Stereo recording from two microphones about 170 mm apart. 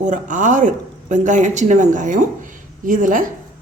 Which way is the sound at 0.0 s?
50° right (ahead or behind).